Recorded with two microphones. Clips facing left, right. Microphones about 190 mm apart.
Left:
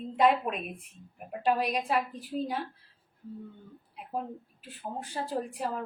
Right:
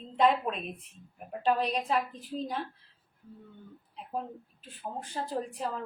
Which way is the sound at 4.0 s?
10° left (ahead or behind).